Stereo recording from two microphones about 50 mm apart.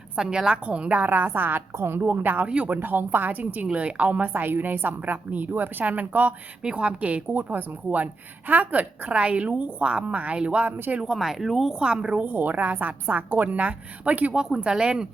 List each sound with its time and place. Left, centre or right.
0.2 s a woman's voice: centre; by 4.3 s right
4.3 s a woman's voice: right
5.1 s a woman's voice: right
6.6 s a woman's voice: centre
11.0 s speech: centre
11.8 s a woman's voice: centre
12.2 s a woman's voice: right
14.3 s speech: centre